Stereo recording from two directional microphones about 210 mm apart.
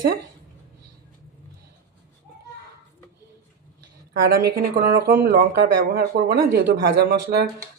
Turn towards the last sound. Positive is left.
turn(degrees=-50)  # may be behind; listen again after turning